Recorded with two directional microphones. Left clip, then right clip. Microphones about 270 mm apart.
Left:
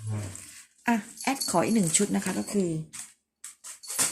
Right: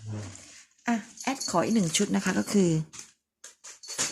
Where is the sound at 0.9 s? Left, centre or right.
Centre; by 2.8 s right.